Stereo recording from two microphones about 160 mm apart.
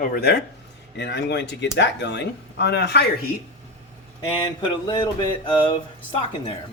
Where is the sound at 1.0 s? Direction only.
90° left.